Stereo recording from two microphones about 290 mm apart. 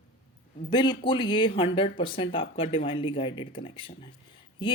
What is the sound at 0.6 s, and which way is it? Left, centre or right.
Speech, centre.